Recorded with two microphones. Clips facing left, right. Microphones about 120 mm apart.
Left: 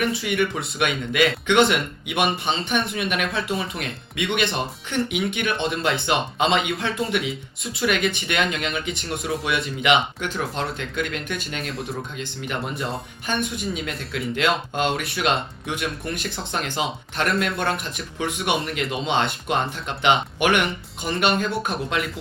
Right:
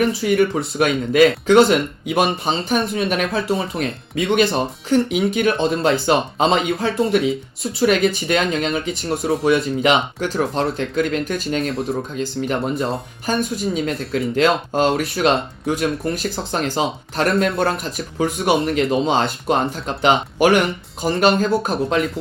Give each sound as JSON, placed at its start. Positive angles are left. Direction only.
{"t": 0.0, "sound": "speech", "side_deg": -35}